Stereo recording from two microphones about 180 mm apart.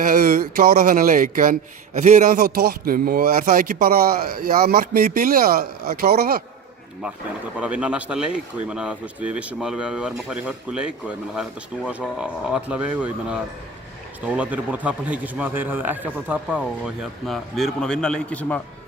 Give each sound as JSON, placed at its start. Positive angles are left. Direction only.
{"t": 0.0, "sound": "speech", "side_deg": -50}
{"t": 7.6, "sound": "speech", "side_deg": -5}
{"t": 11.9, "sound": "a man's voice", "side_deg": -5}